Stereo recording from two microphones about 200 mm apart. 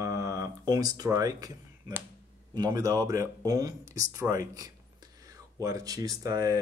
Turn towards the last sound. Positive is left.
turn(degrees=-20)  # may be behind; listen again after turning